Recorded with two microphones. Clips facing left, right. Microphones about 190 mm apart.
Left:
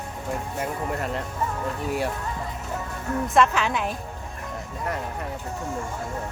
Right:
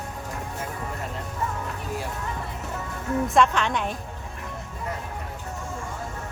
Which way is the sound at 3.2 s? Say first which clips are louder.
Left 1 dB; centre (ahead or behind).